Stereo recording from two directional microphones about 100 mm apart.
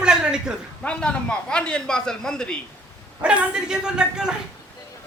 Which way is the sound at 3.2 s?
10° right (ahead or behind).